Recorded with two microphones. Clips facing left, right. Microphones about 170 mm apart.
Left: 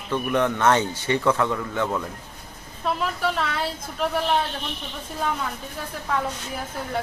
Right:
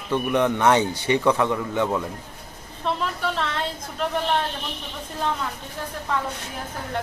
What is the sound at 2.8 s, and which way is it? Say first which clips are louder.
A woman's voice: left 1 dB; 5° left (ahead or behind).